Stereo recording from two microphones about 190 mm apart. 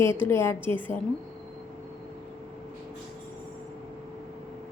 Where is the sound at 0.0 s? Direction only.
15° left (ahead or behind).